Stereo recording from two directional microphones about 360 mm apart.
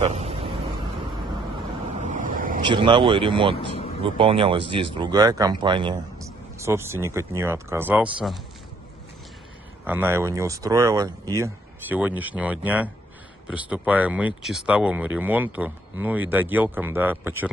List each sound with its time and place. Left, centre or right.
0.0 s vehicle: centre
2.0 s speech: right; by 8.4 s centre
9.8 s speech: centre